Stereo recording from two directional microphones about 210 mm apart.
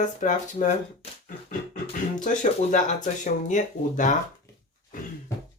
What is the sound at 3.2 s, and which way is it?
Speech, 35° left (ahead or behind).